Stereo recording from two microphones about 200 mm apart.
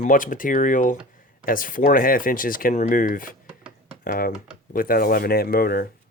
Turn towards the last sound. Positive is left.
turn(degrees=50)  # may be behind; listen again after turning